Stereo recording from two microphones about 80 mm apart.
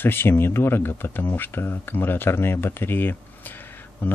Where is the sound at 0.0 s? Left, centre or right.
Left.